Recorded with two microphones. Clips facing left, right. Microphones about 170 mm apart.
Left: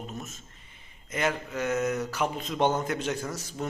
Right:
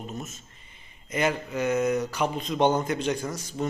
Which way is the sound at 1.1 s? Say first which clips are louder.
Right 3 dB; centre (ahead or behind).